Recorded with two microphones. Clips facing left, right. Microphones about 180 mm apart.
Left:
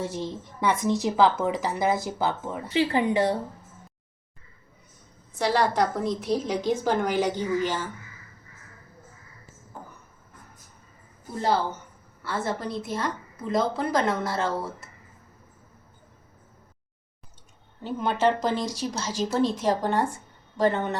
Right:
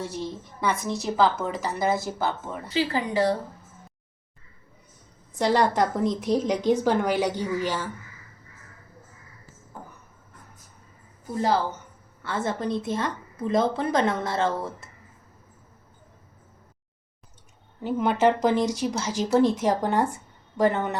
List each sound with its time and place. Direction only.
0.0 s a woman's voice: 20° left (ahead or behind)
5.3 s a woman's voice: 20° right (ahead or behind)
12.2 s a woman's voice: 20° right (ahead or behind)
17.8 s speech: 15° right (ahead or behind)